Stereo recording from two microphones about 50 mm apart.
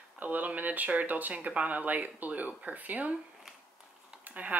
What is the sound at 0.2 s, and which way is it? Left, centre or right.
A woman's voice, right.